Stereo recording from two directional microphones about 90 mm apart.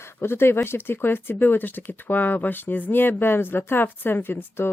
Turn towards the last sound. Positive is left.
turn(degrees=25)  # may be behind; listen again after turning